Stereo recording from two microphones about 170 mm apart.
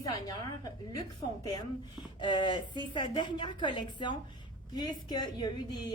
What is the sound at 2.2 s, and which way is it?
Speech, 25° left (ahead or behind).